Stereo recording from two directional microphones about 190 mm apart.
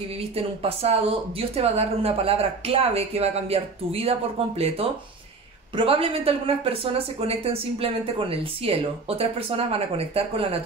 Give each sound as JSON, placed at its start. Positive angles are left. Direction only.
{"t": 0.6, "sound": "speech", "side_deg": -30}